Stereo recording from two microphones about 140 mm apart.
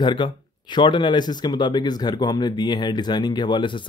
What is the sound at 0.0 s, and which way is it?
Speech, 35° left (ahead or behind).